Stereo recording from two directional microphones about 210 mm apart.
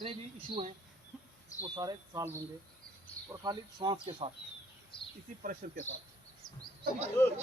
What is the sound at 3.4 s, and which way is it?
Speech, 20° right (ahead or behind).